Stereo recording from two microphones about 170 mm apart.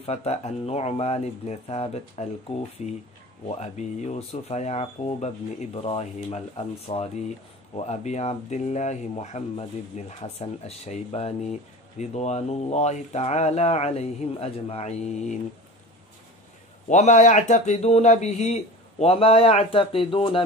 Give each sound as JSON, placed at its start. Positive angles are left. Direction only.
{"t": 0.0, "sound": "speech", "side_deg": 35}
{"t": 7.7, "sound": "speech", "side_deg": 40}
{"t": 16.9, "sound": "speech", "side_deg": 45}